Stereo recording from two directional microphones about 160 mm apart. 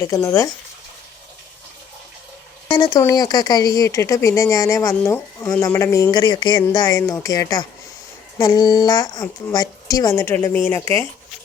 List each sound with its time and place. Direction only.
0.2 s speech: 20° left (ahead or behind)
2.6 s speech: 25° left (ahead or behind)